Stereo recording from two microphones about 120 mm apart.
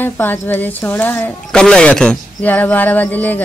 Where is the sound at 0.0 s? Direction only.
15° left (ahead or behind).